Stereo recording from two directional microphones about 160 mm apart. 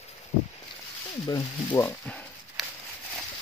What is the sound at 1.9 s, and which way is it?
Speech, 10° left (ahead or behind).